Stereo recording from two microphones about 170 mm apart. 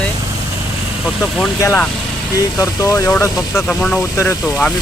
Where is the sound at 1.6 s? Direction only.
15° left (ahead or behind).